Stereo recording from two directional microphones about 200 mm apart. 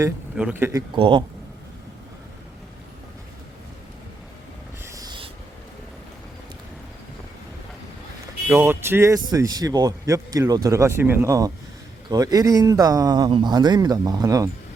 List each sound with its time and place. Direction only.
0.3 s speech: 5° right (ahead or behind)
0.9 s speech: 25° right (ahead or behind)
4.8 s a sound: 15° right (ahead or behind)
8.4 s a man's voice: 10° right (ahead or behind)